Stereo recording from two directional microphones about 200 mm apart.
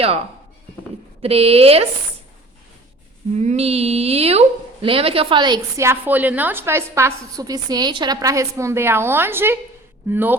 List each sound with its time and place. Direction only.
1.2 s speech: 30° right (ahead or behind)
3.3 s a woman's voice: 35° right (ahead or behind); by 10.3 s 10° right (ahead or behind)